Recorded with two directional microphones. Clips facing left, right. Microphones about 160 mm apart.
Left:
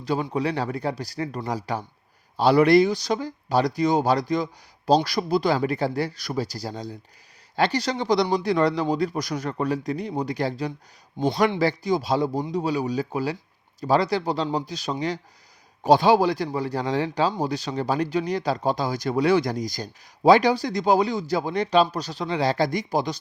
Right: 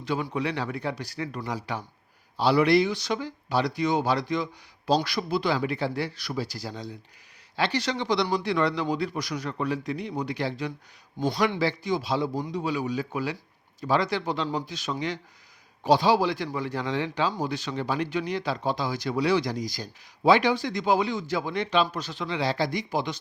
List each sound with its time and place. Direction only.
0.0 s speech: 35° left (ahead or behind)
11.2 s speech: 20° left (ahead or behind)
11.6 s a man's voice: 40° left (ahead or behind)
15.8 s speech: 50° left (ahead or behind)